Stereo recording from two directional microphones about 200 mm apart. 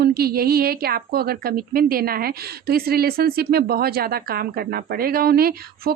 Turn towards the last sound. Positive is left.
turn(degrees=-50)  # may be behind; listen again after turning